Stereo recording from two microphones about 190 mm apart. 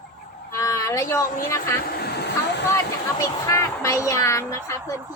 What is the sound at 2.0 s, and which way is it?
Speech, 60° left (ahead or behind).